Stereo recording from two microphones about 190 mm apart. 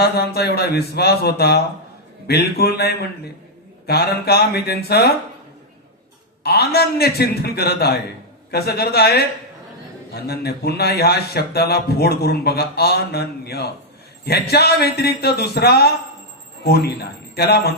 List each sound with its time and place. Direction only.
0.0 s a man's voice: 55° left (ahead or behind)
6.4 s a man's voice: 55° left (ahead or behind)
10.2 s a man's voice: 55° left (ahead or behind)
17.3 s a man's voice: 55° left (ahead or behind)